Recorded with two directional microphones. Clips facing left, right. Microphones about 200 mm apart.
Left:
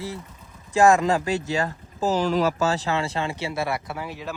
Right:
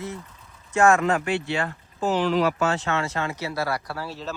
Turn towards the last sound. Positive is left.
turn(degrees=15)  # may be behind; listen again after turning